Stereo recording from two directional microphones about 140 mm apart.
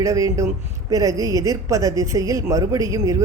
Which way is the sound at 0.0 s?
20° right (ahead or behind).